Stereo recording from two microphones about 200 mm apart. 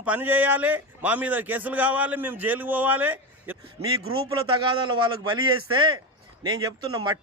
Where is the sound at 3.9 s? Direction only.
90° right.